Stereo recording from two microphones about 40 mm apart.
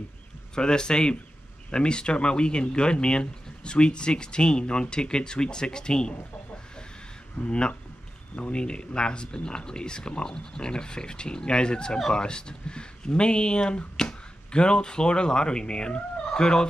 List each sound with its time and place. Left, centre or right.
0.6 s speech: left
7.4 s speech: left
16.3 s fowl: centre